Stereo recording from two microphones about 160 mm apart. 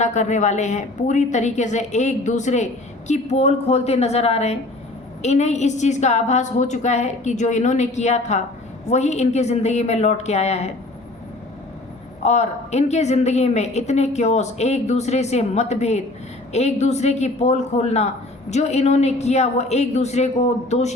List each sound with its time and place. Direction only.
0.0 s a woman's voice: 45° left (ahead or behind)
12.2 s a woman's voice: 45° left (ahead or behind)